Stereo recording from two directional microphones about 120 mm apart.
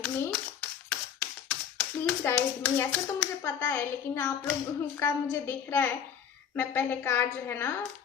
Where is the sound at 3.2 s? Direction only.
15° left (ahead or behind).